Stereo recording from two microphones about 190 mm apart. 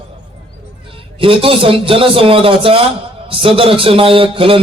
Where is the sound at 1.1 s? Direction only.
30° right (ahead or behind).